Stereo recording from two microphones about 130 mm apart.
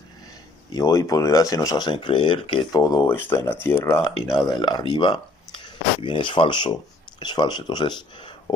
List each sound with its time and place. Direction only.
0.7 s speech: 25° left (ahead or behind)
2.7 s speech: 25° left (ahead or behind)
4.5 s speech: 30° left (ahead or behind)